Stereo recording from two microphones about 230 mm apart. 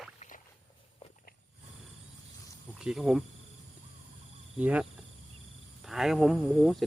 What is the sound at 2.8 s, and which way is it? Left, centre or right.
Speech, centre.